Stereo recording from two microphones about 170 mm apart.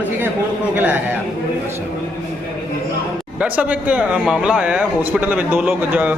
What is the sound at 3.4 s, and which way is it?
Speech, 10° right (ahead or behind).